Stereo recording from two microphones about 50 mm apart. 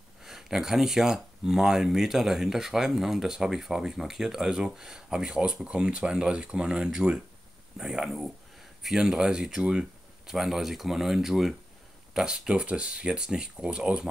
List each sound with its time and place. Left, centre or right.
0.2 s speech: centre